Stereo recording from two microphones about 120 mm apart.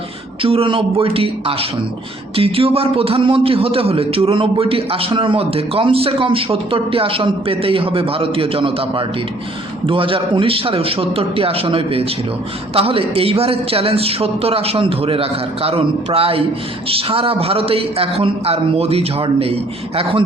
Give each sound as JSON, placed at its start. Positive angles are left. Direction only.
{"t": 0.4, "sound": "a man's voice", "side_deg": -50}